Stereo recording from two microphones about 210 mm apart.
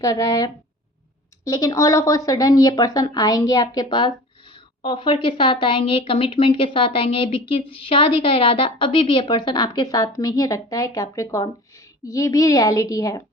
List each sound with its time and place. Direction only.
0.0 s a woman's voice: 15° left (ahead or behind)